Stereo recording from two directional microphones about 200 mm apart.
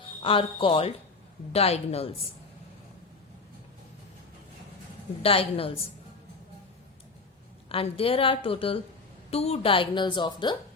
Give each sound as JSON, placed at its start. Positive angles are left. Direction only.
{"t": 0.2, "sound": "a woman's voice", "side_deg": 25}
{"t": 5.2, "sound": "a woman's voice", "side_deg": 30}
{"t": 7.7, "sound": "a woman's voice", "side_deg": 30}